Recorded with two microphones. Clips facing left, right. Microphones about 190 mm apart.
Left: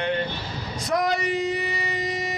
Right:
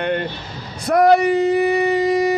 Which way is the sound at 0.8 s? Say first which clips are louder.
Right 11 dB; 60° right (ahead or behind).